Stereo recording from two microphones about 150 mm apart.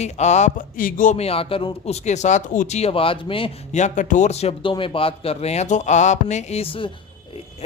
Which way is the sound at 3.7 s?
55° left (ahead or behind).